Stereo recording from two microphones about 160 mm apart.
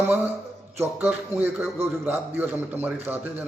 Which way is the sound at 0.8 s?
15° right (ahead or behind).